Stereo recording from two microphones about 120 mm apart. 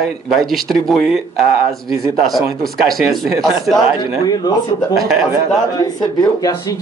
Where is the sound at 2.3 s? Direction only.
Centre (ahead or behind).